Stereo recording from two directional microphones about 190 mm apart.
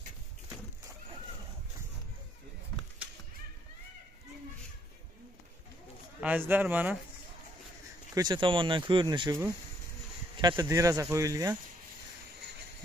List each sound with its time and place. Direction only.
6.2 s speech: 10° right (ahead or behind)
8.1 s speech: 20° right (ahead or behind)